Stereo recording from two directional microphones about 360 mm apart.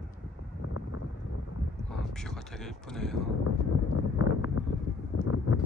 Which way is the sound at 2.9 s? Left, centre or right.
Centre.